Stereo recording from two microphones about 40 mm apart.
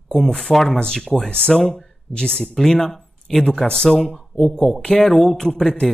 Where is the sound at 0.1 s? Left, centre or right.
Centre.